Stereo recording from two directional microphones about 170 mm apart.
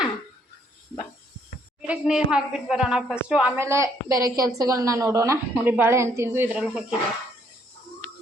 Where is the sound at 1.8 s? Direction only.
5° right (ahead or behind).